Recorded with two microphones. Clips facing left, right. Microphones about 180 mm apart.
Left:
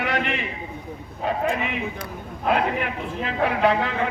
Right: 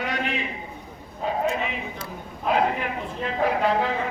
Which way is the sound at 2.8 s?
65° left (ahead or behind).